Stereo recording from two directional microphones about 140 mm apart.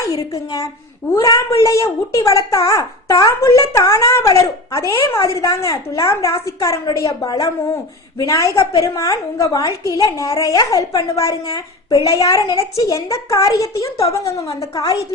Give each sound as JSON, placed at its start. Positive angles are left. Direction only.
{"t": 0.0, "sound": "a woman's voice", "side_deg": 25}